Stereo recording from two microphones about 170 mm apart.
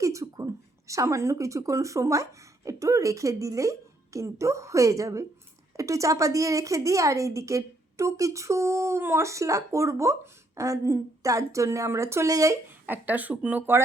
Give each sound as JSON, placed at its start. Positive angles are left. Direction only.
{"t": 0.0, "sound": "a woman's voice", "side_deg": -20}